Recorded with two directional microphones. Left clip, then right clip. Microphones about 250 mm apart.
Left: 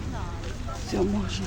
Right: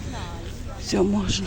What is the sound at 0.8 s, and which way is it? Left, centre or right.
Speech, right.